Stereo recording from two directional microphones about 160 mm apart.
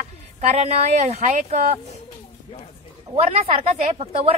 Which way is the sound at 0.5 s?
45° right (ahead or behind).